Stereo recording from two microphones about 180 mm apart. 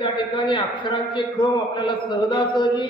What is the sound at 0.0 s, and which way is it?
A man's voice, 25° left (ahead or behind).